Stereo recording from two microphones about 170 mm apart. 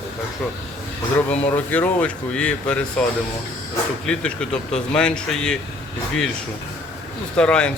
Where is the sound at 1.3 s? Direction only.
10° left (ahead or behind).